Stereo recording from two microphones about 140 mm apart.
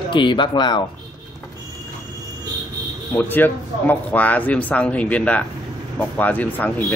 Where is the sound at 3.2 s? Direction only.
15° left (ahead or behind).